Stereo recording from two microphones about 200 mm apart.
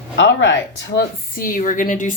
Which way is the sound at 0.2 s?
65° left (ahead or behind).